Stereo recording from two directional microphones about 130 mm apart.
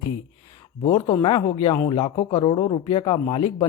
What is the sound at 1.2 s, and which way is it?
Speech, 40° left (ahead or behind).